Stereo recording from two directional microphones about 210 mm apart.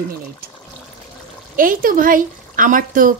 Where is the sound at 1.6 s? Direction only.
40° right (ahead or behind).